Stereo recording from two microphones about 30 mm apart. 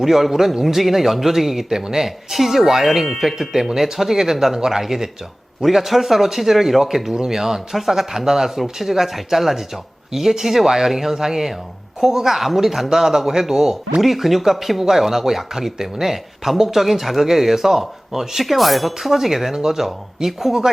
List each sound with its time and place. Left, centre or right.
0.0 s speech: centre
7.1 s speech: right
14.0 s speech: centre